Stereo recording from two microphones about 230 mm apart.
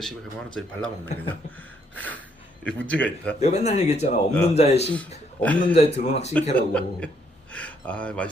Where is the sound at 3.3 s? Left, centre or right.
Left.